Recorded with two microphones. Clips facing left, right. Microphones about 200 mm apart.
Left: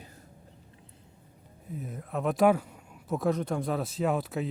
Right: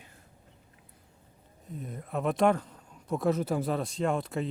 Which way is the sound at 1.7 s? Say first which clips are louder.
Left 1 dB; 5° left (ahead or behind).